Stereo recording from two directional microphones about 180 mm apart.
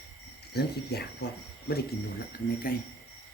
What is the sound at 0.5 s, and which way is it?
Speech, 65° left (ahead or behind).